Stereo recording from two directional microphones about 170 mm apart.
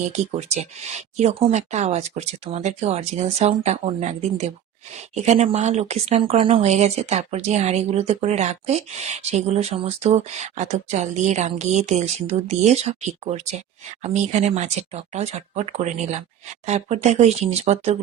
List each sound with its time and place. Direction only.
0.1 s speech: 40° right (ahead or behind)